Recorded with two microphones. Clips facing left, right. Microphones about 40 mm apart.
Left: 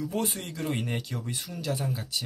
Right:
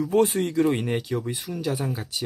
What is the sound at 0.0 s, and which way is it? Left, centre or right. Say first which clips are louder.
Speech: right 10 dB; right.